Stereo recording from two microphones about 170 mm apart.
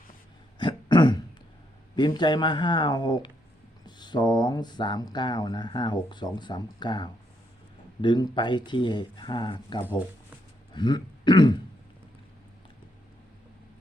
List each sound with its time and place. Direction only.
0.6 s throat clearing: 25° left (ahead or behind)
2.0 s speech: 25° left (ahead or behind)
9.8 s speech: 10° right (ahead or behind)
10.8 s speech: 25° left (ahead or behind)